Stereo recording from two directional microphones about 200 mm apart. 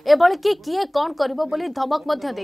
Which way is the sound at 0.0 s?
Centre (ahead or behind).